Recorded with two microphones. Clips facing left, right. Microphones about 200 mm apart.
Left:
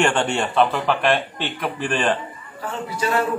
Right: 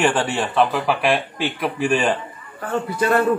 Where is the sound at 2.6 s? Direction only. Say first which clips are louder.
Right 4 dB; 55° right (ahead or behind).